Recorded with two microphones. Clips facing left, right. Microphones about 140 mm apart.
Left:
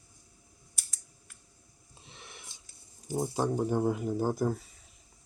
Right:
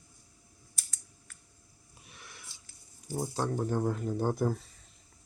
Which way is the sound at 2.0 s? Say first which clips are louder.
Left 2 dB; 25° left (ahead or behind).